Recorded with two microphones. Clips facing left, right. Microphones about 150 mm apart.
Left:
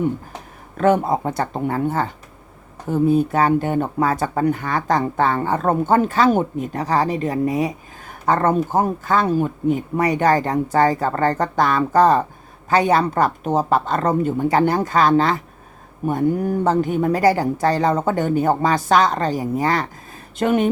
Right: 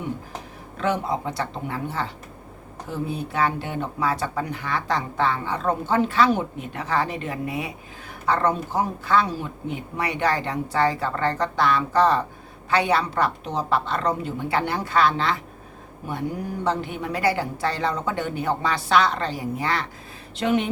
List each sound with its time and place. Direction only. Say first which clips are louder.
0.8 s speech: left 8 dB; 50° left (ahead or behind)